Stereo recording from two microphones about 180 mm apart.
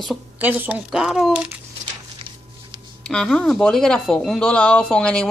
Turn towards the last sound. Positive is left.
turn(degrees=5)  # may be behind; listen again after turning